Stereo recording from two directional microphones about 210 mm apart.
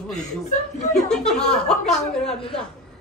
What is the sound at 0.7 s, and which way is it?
Speech, 30° left (ahead or behind).